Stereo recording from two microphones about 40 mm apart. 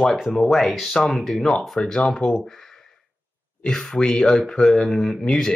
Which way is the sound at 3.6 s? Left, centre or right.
Centre.